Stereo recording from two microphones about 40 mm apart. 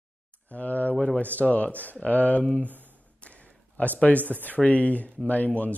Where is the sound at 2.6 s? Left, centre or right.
Right.